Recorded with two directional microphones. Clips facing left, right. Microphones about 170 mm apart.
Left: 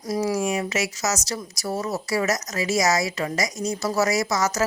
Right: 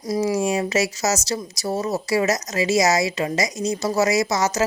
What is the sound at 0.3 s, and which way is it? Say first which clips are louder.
Speech: right 4 dB; 30° right (ahead or behind).